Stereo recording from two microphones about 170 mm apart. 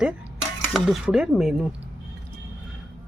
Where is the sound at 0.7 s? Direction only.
5° right (ahead or behind).